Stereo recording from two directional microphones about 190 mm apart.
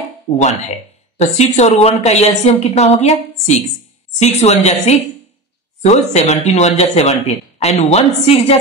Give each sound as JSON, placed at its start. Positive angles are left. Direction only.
{"t": 1.1, "sound": "speech", "side_deg": 35}